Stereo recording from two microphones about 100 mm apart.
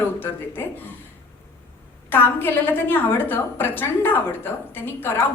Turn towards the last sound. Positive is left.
turn(degrees=20)  # may be behind; listen again after turning